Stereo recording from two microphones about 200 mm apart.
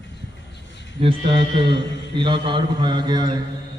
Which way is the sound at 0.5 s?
60° left (ahead or behind).